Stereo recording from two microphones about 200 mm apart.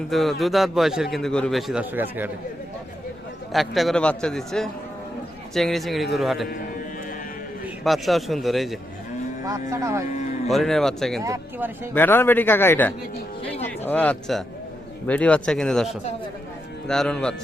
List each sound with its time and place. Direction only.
0.1 s a man's voice: centre (ahead or behind)
3.5 s a man's voice: centre (ahead or behind)
7.9 s a man's voice: centre (ahead or behind)
9.5 s speech: 15° right (ahead or behind)
10.1 s cattle: 35° left (ahead or behind)
10.5 s a man's voice: centre (ahead or behind)
11.2 s speech: 15° right (ahead or behind)
11.9 s a man's voice: 10° left (ahead or behind)